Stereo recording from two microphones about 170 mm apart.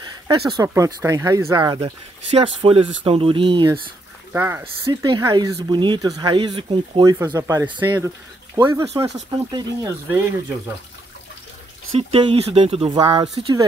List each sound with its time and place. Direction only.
0.5 s speech: 20° right (ahead or behind)
4.3 s speech: 15° right (ahead or behind)
5.0 s speech: 25° right (ahead or behind)
7.8 s speech: 15° right (ahead or behind)
11.9 s speech: 35° right (ahead or behind)